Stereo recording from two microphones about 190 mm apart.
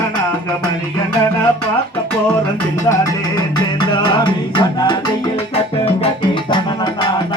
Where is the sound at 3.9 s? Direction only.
25° left (ahead or behind).